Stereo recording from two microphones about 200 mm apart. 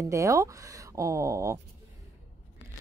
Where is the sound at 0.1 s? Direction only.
15° right (ahead or behind).